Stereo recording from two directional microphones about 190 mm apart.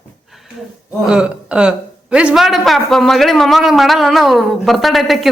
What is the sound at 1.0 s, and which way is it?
A man's voice, 5° right (ahead or behind).